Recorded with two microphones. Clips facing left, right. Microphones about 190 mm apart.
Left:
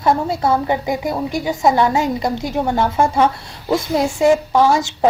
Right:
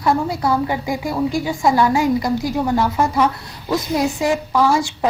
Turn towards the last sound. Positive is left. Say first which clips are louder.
# left 2 dB
turn(degrees=25)  # may be behind; listen again after turning